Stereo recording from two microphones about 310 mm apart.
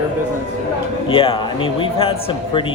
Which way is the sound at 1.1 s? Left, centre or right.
Centre.